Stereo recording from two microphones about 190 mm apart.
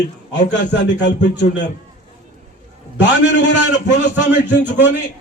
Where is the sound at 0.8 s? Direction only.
65° left (ahead or behind).